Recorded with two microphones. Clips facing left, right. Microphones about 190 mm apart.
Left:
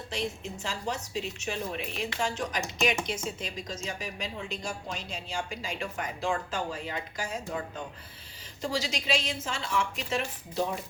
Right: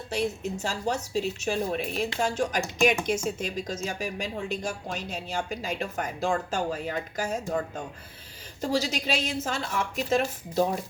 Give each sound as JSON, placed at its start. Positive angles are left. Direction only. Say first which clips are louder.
{"t": 0.1, "sound": "a woman's voice", "louder": "right 6 dB", "side_deg": -40}
{"t": 8.6, "sound": "a woman's voice", "louder": "right 4 dB", "side_deg": -45}